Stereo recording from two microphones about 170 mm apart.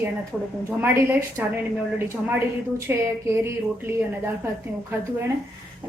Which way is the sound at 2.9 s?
15° right (ahead or behind).